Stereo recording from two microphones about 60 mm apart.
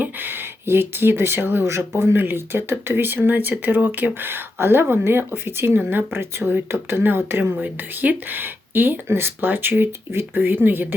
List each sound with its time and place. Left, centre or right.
0.0 s speech: right
7.6 s speech: right